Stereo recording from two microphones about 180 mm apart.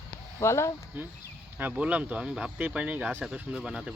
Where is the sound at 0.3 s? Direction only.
15° left (ahead or behind).